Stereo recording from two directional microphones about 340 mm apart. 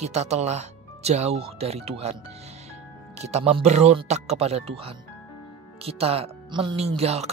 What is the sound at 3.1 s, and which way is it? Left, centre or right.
Speech, centre.